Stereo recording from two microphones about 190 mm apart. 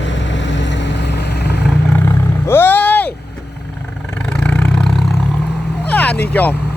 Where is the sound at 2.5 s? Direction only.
10° left (ahead or behind).